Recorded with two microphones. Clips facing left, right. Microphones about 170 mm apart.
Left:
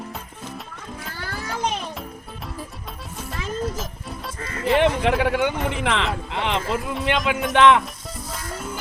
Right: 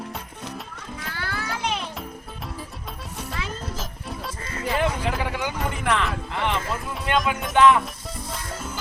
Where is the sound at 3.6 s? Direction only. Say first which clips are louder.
Left 5 dB; centre (ahead or behind).